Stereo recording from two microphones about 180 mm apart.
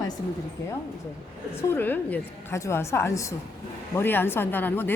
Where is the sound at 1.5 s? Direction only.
10° left (ahead or behind).